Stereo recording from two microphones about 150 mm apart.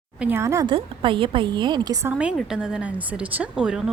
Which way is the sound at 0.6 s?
35° right (ahead or behind).